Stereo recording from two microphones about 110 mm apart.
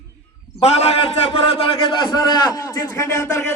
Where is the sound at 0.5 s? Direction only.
70° left (ahead or behind).